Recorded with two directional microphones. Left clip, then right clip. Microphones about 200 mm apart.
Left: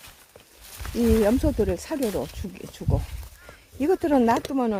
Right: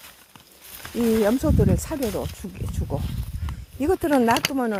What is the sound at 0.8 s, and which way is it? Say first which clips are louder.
Snake: right 1 dB; 45° right (ahead or behind).